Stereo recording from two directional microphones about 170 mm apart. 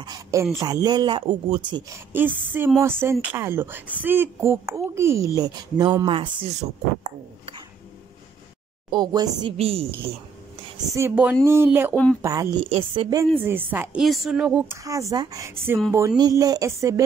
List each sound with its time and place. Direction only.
0.0 s speech: 20° right (ahead or behind)
1.9 s speech: 10° right (ahead or behind); by 7.6 s 35° right (ahead or behind)
8.9 s speech: 25° right (ahead or behind)
9.6 s a woman's voice: 35° right (ahead or behind)
11.0 s speech: 10° right (ahead or behind)
11.9 s speech: 10° left (ahead or behind)
12.2 s speech: 20° right (ahead or behind)
12.6 s a woman's voice: 35° right (ahead or behind)
13.7 s speech: 10° right (ahead or behind)
14.0 s a woman's voice: centre (ahead or behind)
14.7 s speech: 20° right (ahead or behind)